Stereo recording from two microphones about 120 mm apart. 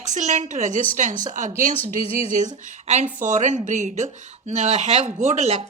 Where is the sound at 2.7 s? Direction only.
85° right.